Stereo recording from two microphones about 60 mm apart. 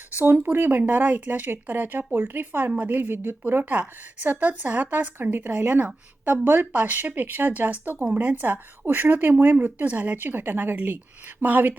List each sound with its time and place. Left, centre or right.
0.2 s a woman's voice: right